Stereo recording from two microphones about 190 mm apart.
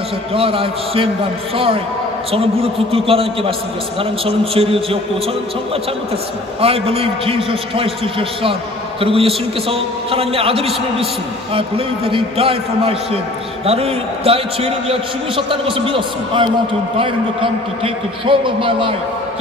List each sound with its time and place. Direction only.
0.3 s a man's voice: 30° right (ahead or behind)
2.3 s a man's voice: 30° right (ahead or behind)
6.6 s a man's voice: 30° right (ahead or behind)